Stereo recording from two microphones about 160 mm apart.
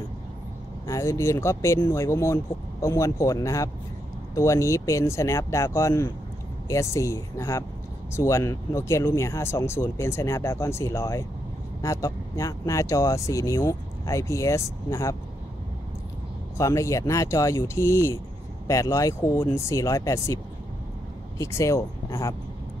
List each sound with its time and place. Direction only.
0.8 s speech: 20° left (ahead or behind)
16.5 s speech: 20° left (ahead or behind)
21.4 s speech: 20° left (ahead or behind)